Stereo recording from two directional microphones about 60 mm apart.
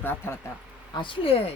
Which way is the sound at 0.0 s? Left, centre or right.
Left.